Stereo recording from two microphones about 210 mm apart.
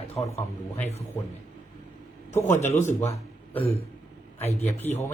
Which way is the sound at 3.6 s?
30° left (ahead or behind).